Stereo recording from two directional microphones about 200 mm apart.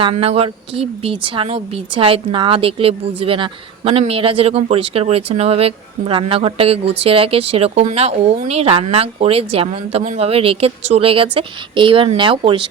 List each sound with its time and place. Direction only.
0.0 s a woman's voice: 30° right (ahead or behind)